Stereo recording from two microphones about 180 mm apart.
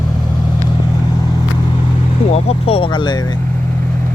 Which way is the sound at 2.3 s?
35° left (ahead or behind).